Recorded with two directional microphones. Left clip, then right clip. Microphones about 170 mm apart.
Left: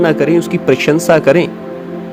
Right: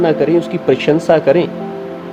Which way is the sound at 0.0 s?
45° left (ahead or behind).